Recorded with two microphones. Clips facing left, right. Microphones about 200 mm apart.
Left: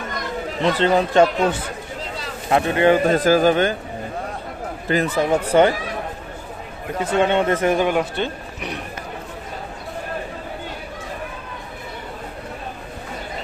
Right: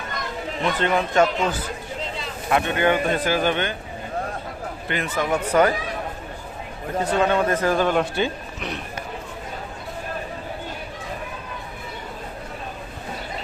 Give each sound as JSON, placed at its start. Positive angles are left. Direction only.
{"t": 0.6, "sound": "a man's voice", "side_deg": 30}
{"t": 4.9, "sound": "a man's voice", "side_deg": 35}
{"t": 7.0, "sound": "speech", "side_deg": 25}